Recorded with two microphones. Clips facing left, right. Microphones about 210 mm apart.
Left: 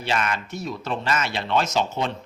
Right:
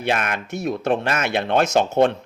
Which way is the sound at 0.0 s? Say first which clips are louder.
Right 3 dB; 55° right (ahead or behind).